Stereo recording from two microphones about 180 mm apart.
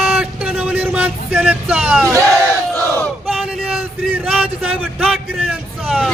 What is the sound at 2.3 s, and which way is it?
Battle cry, 5° left (ahead or behind).